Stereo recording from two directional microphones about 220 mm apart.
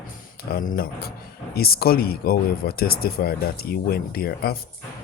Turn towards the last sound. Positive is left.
turn(degrees=45)  # may be behind; listen again after turning